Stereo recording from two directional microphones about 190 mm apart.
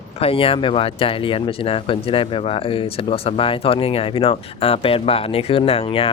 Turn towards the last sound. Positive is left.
turn(degrees=30)  # may be behind; listen again after turning